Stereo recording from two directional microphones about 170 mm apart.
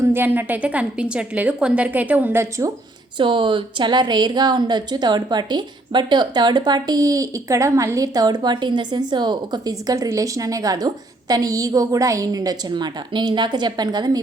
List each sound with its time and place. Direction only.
0.0 s a woman's voice: 10° right (ahead or behind)
3.2 s speech: 30° right (ahead or behind)